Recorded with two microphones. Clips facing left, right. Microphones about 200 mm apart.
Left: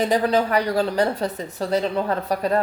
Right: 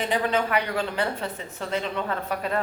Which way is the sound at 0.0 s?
40° left (ahead or behind).